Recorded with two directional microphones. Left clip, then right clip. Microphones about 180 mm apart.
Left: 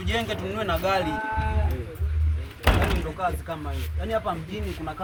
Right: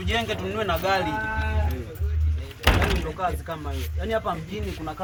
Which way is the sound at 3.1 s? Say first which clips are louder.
Even; 25° left (ahead or behind).